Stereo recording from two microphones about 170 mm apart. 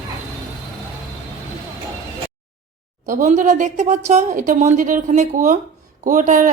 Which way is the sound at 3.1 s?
50° right (ahead or behind).